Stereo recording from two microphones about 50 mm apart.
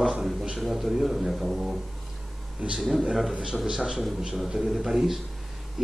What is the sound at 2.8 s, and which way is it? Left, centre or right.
A man's voice, centre.